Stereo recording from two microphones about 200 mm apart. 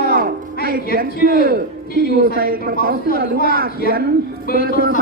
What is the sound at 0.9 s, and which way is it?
A man's voice, 45° right (ahead or behind).